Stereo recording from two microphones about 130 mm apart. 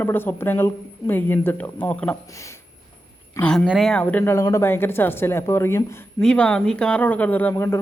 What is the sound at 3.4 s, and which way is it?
Speech, 5° left (ahead or behind).